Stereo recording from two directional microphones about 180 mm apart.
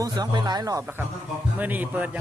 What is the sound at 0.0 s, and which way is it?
A man's voice, 20° right (ahead or behind).